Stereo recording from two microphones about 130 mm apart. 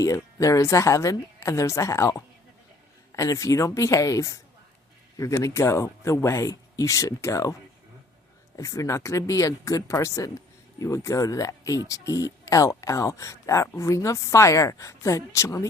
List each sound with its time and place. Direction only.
0.0 s speech: 25° left (ahead or behind)
8.5 s speech: 25° left (ahead or behind)